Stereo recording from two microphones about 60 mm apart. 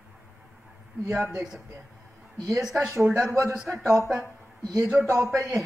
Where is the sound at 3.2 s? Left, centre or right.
Centre.